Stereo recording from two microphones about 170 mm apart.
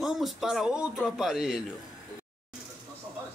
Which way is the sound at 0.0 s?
Centre (ahead or behind).